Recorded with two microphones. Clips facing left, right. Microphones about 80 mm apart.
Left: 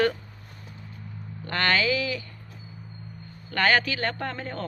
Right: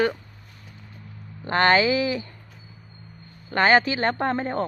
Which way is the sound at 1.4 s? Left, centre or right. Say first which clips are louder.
Right 6 dB; right.